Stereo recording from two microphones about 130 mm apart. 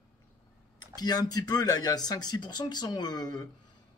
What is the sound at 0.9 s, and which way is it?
Speech, 30° left (ahead or behind).